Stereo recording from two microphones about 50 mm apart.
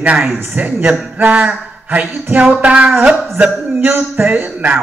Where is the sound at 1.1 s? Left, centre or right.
Right.